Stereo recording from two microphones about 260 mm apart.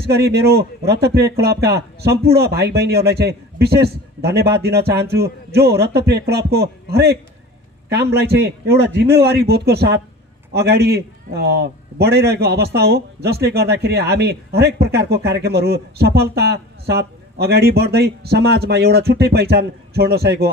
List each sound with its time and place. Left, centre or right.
0.0 s a man's voice: right